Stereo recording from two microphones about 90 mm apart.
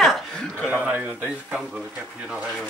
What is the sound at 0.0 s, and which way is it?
Chuckle, 5° left (ahead or behind).